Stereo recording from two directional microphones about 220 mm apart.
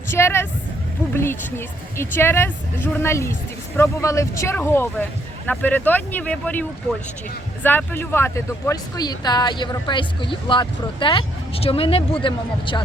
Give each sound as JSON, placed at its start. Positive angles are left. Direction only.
{"t": 0.1, "sound": "speech", "side_deg": 10}